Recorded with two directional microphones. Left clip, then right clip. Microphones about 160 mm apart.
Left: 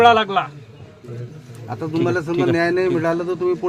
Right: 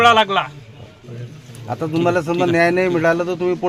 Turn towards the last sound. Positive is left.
turn(degrees=-60)  # may be behind; listen again after turning